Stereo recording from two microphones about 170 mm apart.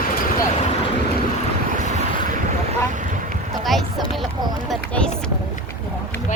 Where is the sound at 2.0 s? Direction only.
50° right (ahead or behind).